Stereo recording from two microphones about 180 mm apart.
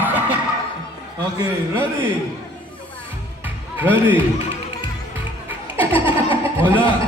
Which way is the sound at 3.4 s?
10° right (ahead or behind).